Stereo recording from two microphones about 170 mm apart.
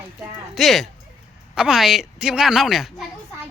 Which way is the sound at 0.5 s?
Centre (ahead or behind).